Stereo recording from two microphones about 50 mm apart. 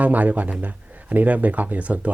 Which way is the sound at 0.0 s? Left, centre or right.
Right.